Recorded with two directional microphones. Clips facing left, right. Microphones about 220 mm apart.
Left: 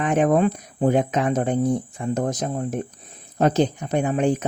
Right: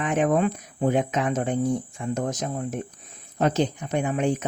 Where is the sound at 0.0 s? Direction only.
40° left (ahead or behind).